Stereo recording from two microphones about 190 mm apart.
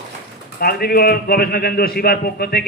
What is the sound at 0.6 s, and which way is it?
A man's voice, 55° left (ahead or behind).